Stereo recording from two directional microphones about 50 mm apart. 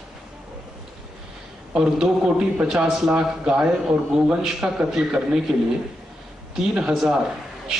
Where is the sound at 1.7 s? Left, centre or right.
Centre.